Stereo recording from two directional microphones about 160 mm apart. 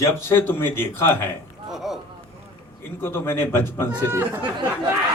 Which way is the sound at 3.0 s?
15° left (ahead or behind).